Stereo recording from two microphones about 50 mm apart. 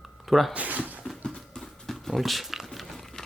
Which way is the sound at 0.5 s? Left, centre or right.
Right.